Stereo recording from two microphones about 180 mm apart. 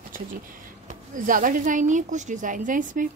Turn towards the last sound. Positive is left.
turn(degrees=-45)  # may be behind; listen again after turning